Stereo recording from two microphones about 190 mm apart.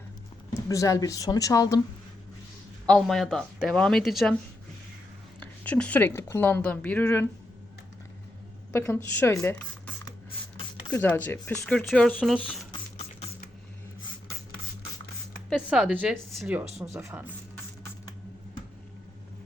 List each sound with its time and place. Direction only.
0.7 s speech: 15° left (ahead or behind)
2.8 s speech: centre (ahead or behind)
5.4 s speech: 5° left (ahead or behind)
8.7 s speech: 10° left (ahead or behind)
10.9 s speech: 10° left (ahead or behind)
15.4 s speech: centre (ahead or behind); by 17.2 s 15° right (ahead or behind)